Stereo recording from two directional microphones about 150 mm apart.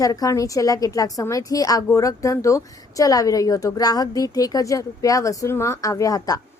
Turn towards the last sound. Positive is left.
turn(degrees=25)  # may be behind; listen again after turning